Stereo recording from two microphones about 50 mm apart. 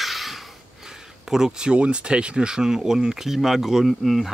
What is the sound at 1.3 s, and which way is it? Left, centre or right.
Speech, centre.